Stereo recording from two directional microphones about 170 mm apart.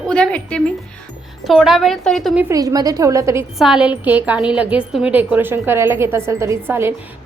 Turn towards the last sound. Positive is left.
turn(degrees=-15)  # may be behind; listen again after turning